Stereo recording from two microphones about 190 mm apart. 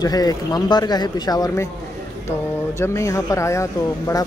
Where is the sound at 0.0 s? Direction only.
20° left (ahead or behind).